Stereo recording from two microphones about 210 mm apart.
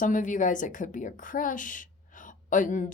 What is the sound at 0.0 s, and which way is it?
A woman's voice, 40° left (ahead or behind).